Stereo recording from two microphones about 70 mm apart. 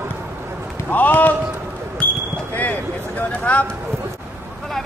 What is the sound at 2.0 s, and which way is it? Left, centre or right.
Basketball bounce, left.